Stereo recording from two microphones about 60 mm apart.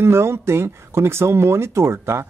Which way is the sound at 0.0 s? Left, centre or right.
Right.